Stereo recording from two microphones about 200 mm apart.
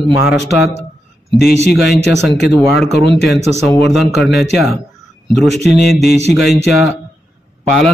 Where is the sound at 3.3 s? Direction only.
30° right (ahead or behind).